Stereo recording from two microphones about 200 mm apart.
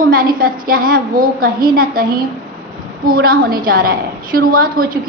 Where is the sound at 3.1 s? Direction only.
50° right (ahead or behind).